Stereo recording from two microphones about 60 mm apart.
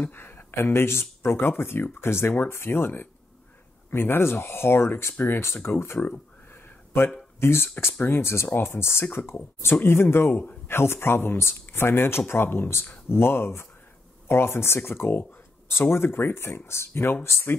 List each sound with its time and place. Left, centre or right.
0.0 s speech: left
6.0 s a sound: left
7.3 s speech: left